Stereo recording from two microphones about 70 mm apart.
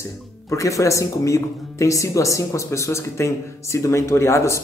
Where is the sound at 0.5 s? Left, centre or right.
Left.